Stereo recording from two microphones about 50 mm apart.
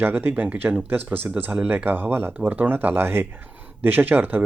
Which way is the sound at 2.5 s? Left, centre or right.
Right.